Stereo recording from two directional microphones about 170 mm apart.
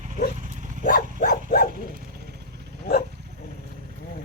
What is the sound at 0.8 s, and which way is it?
Dog, 55° left (ahead or behind).